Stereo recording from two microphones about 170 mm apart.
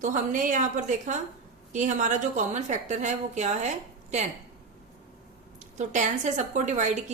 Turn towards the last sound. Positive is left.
turn(degrees=-45)  # may be behind; listen again after turning